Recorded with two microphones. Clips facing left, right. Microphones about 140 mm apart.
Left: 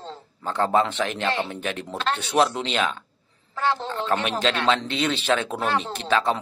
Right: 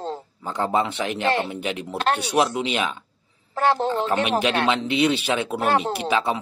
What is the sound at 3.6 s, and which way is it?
Speech, 45° right (ahead or behind).